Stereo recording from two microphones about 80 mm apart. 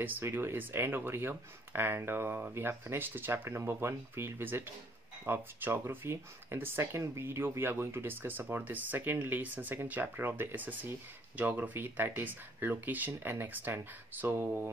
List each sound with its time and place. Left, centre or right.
0.0 s speech: right